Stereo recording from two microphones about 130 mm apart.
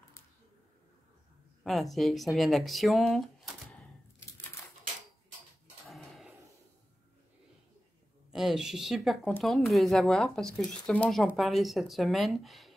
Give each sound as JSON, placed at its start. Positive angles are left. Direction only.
{"t": 1.6, "sound": "speech", "side_deg": 0}
{"t": 5.9, "sound": "a sound", "side_deg": 0}
{"t": 8.3, "sound": "speech", "side_deg": -5}